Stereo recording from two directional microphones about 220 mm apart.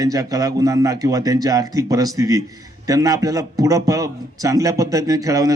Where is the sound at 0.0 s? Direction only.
15° right (ahead or behind).